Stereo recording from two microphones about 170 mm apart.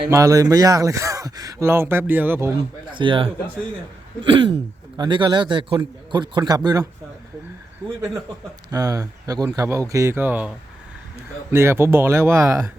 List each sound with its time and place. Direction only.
0.1 s speech: 20° right (ahead or behind)
2.9 s speech: 30° right (ahead or behind)
8.7 s speech: 20° right (ahead or behind)
11.5 s speech: 15° right (ahead or behind)